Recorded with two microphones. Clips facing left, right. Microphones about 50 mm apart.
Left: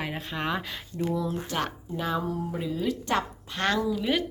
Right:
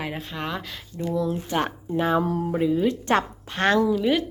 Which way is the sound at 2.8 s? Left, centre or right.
Right.